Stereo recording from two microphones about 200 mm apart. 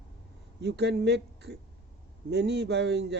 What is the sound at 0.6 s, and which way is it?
Speech, 55° right (ahead or behind).